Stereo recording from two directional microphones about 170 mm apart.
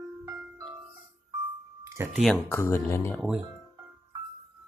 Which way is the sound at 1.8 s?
15° right (ahead or behind).